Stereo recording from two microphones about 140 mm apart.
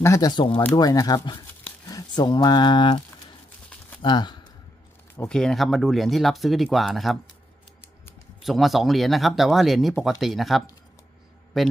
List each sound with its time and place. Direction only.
0.0 s speech: 25° left (ahead or behind)
4.0 s speech: 35° left (ahead or behind)
5.3 s speech: 5° left (ahead or behind)
8.4 s speech: centre (ahead or behind)